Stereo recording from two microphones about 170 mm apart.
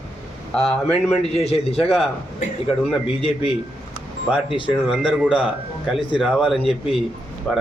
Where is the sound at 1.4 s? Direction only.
35° left (ahead or behind).